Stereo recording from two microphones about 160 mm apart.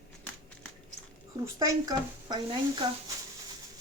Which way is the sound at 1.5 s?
20° right (ahead or behind).